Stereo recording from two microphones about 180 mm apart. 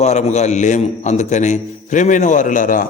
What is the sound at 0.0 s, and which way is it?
A man's voice, 40° left (ahead or behind).